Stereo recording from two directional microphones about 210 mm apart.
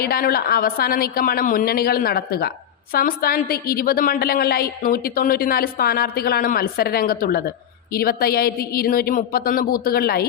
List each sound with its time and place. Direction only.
0.0 s a woman's voice: 45° left (ahead or behind)